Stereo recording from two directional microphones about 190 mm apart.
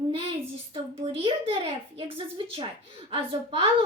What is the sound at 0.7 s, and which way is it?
A woman's voice, 25° right (ahead or behind).